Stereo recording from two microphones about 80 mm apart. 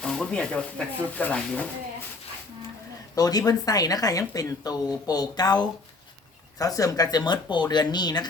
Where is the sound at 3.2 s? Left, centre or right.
Left.